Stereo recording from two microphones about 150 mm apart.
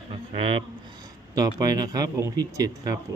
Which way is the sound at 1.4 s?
25° right (ahead or behind).